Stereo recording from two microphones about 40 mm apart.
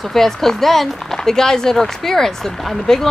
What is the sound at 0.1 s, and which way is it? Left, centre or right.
Speech, centre.